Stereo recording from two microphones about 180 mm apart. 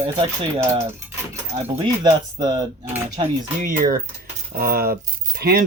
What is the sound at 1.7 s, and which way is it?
Speech, 25° right (ahead or behind).